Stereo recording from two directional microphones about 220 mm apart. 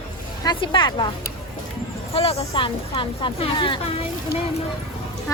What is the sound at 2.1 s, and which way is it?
A woman's voice, 25° left (ahead or behind).